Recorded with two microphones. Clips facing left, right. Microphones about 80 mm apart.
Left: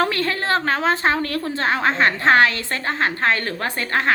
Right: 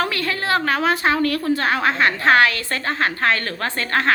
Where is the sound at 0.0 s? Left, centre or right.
Left.